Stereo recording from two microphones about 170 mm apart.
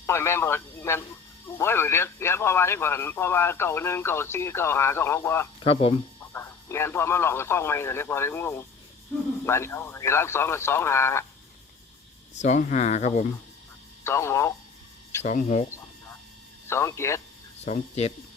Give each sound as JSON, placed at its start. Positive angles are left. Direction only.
{"t": 0.0, "sound": "speech", "side_deg": 15}
{"t": 5.5, "sound": "speech", "side_deg": 30}
{"t": 6.3, "sound": "speech", "side_deg": 15}
{"t": 12.4, "sound": "speech", "side_deg": 45}
{"t": 14.0, "sound": "speech", "side_deg": 15}
{"t": 15.2, "sound": "speech", "side_deg": 45}
{"t": 16.6, "sound": "speech", "side_deg": 15}
{"t": 17.7, "sound": "speech", "side_deg": 40}